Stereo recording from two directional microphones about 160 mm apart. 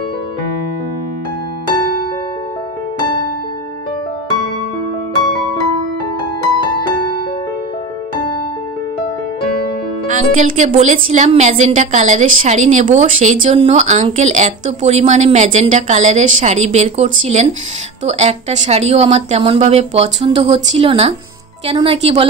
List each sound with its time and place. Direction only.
10.0 s a woman's voice: 50° right (ahead or behind)